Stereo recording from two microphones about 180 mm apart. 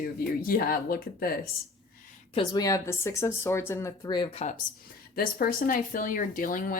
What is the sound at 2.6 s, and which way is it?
Speech, 15° left (ahead or behind).